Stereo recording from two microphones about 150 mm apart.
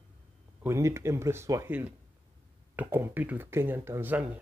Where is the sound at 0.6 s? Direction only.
15° right (ahead or behind).